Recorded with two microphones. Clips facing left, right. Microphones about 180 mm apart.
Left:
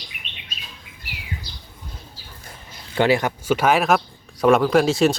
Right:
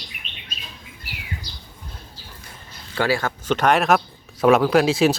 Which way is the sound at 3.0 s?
20° left (ahead or behind).